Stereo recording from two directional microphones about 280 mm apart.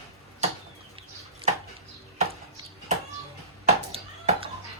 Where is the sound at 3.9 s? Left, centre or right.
Right.